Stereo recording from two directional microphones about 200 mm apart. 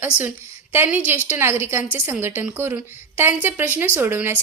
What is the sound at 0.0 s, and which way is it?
A woman's voice, 10° right (ahead or behind).